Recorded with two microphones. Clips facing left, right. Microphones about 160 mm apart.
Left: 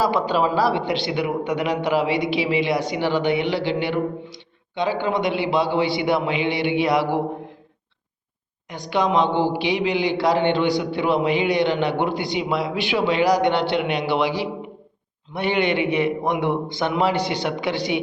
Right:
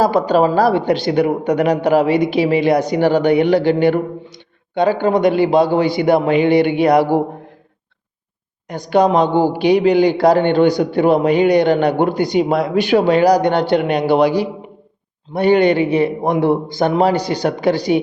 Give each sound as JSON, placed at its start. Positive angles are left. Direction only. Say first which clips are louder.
{"t": 0.0, "sound": "a man's voice", "louder": "right 6 dB", "side_deg": -40}
{"t": 8.7, "sound": "a man's voice", "louder": "right 7 dB", "side_deg": -45}